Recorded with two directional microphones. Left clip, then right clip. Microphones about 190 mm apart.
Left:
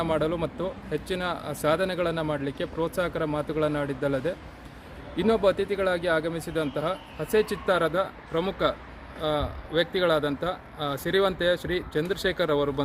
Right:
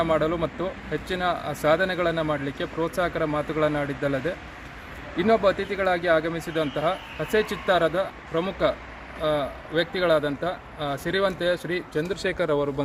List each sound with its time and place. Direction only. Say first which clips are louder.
0.0 s speech: right 3 dB; 25° left (ahead or behind)
12.0 s speech: even; 10° left (ahead or behind)